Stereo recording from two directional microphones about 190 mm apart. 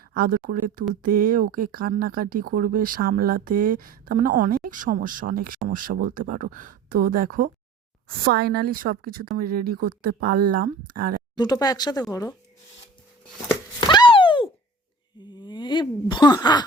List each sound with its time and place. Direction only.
0.1 s speech: 50° right (ahead or behind)
11.3 s speech: 20° left (ahead or behind)
13.5 s chopping: 20° left (ahead or behind)
15.2 s speech: 25° left (ahead or behind)